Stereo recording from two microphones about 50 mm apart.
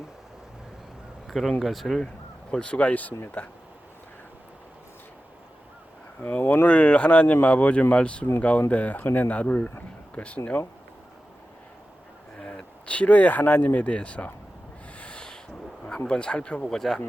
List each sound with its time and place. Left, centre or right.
1.3 s speech: centre
2.5 s speech: left
6.2 s speech: left
12.5 s speech: left
14.9 s owl: left
16.0 s speech: centre
16.6 s speech: centre